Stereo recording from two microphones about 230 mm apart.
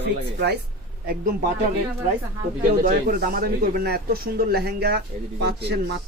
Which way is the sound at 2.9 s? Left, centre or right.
Right.